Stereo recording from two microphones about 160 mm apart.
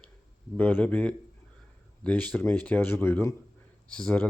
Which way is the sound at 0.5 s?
10° left (ahead or behind).